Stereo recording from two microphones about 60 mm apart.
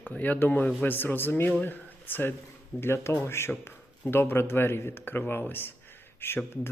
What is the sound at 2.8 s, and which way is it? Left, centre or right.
Speech, left.